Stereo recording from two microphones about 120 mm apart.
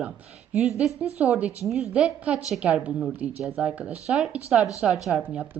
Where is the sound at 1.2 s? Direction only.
10° right (ahead or behind).